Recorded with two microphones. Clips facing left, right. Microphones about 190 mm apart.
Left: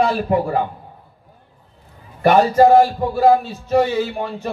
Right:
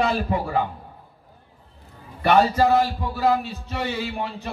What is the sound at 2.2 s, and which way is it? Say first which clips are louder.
Speech: left 6 dB; 50° left (ahead or behind).